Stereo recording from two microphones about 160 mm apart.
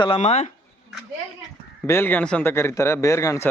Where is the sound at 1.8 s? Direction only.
15° left (ahead or behind).